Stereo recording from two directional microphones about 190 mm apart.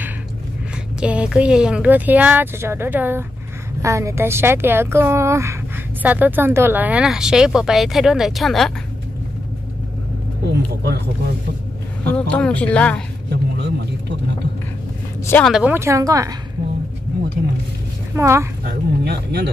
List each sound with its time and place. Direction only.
1.0 s speech: 5° right (ahead or behind)
10.5 s vehicle: 55° right (ahead or behind)
12.1 s speech: 5° left (ahead or behind)
13.3 s vehicle: 60° right (ahead or behind)
15.2 s speech: 10° left (ahead or behind)
15.5 s speech: 10° right (ahead or behind)
18.1 s speech: 15° right (ahead or behind)
18.6 s speech: 55° right (ahead or behind)